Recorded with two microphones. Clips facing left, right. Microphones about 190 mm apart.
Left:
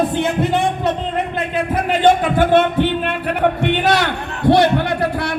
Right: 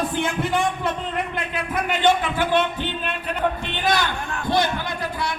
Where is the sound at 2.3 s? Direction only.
55° left (ahead or behind).